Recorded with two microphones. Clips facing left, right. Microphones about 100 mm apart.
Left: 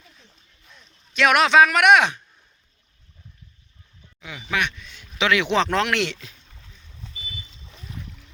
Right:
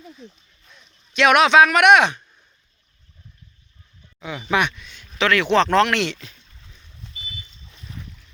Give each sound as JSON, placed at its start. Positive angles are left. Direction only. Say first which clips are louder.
{"t": 0.7, "sound": "speech", "louder": "right 1 dB", "side_deg": 0}
{"t": 4.2, "sound": "speech", "louder": "right 5 dB", "side_deg": -30}
{"t": 4.8, "sound": "a man's voice", "louder": "even", "side_deg": 0}
{"t": 5.1, "sound": "speech", "louder": "right 3 dB", "side_deg": 15}